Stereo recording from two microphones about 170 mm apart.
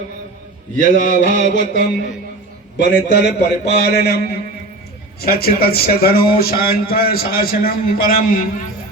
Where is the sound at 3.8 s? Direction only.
70° left (ahead or behind).